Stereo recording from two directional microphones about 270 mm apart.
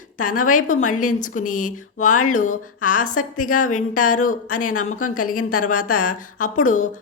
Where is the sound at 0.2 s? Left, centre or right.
Left.